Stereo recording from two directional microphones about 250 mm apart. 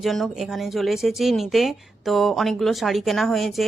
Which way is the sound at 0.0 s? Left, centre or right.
Centre.